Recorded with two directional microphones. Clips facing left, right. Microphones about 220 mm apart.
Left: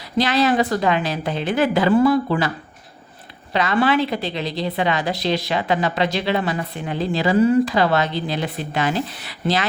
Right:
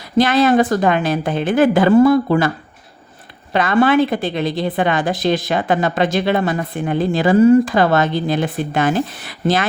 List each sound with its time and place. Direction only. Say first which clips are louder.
0.2 s a woman's voice: right 5 dB; 50° right (ahead or behind)
3.5 s a woman's voice: right 4 dB; 50° right (ahead or behind)